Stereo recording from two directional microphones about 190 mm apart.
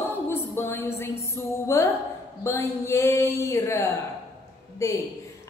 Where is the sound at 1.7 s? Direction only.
15° left (ahead or behind).